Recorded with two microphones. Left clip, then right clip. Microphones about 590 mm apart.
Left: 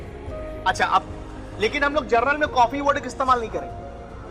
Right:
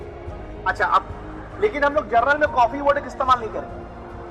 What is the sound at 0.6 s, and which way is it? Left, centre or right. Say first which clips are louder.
A man's voice: right 1 dB; left.